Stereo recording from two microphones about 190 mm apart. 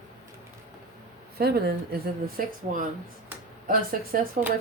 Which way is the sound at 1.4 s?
55° right (ahead or behind).